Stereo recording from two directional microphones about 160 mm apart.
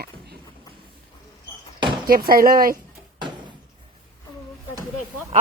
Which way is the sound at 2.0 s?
65° right (ahead or behind).